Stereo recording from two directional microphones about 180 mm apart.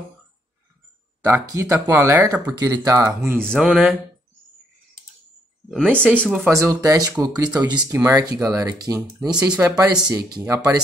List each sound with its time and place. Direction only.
1.2 s speech: 15° right (ahead or behind)
2.5 s speech: 20° right (ahead or behind)
3.4 s speech: 5° right (ahead or behind)
5.7 s speech: 5° right (ahead or behind)
9.3 s speech: 5° right (ahead or behind)
10.4 s speech: 20° right (ahead or behind)